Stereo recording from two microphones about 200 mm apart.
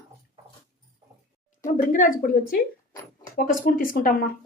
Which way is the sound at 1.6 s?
40° left (ahead or behind).